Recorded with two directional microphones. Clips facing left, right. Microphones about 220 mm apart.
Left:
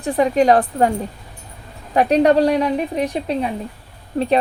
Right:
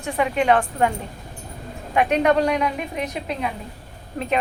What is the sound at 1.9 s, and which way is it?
A woman's voice, 35° left (ahead or behind).